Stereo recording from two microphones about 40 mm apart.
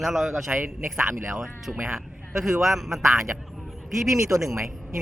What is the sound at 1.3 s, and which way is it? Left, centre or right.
A man's voice, centre.